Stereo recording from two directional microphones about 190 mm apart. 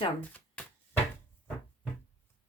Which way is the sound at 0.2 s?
10° left (ahead or behind).